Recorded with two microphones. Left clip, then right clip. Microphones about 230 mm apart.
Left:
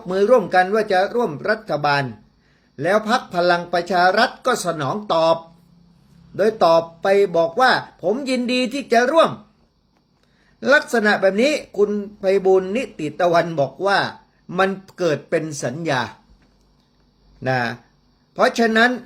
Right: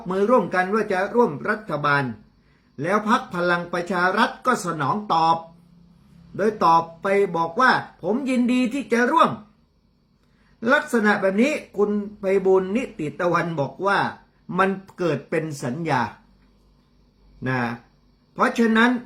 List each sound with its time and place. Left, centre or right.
0.1 s a man's voice: centre
10.6 s a man's voice: centre
17.4 s a man's voice: centre